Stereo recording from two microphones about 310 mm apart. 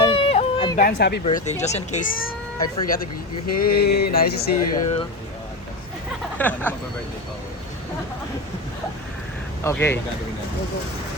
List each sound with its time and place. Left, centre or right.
0.0 s a sound: centre
0.8 s speech: left
6.4 s speech: centre
9.6 s speech: centre